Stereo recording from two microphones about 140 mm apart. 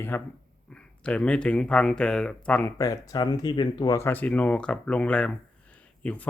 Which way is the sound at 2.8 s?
25° left (ahead or behind).